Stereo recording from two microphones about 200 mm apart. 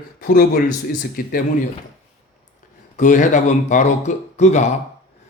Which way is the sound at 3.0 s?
40° left (ahead or behind).